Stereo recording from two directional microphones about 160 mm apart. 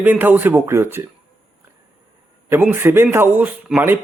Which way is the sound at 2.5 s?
15° right (ahead or behind).